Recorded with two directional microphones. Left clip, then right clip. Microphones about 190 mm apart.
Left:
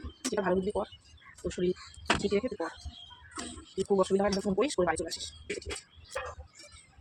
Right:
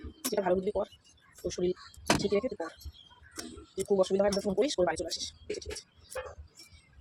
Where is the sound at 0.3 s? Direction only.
5° right (ahead or behind).